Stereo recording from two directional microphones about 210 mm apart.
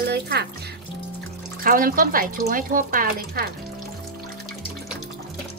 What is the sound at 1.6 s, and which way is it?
A woman's voice, 40° right (ahead or behind).